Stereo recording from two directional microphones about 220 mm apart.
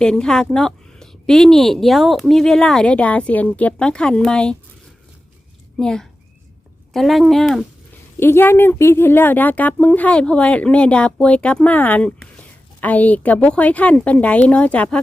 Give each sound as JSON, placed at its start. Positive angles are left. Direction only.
{"t": 0.0, "sound": "a woman's voice", "side_deg": 5}
{"t": 5.7, "sound": "a child's voice", "side_deg": 0}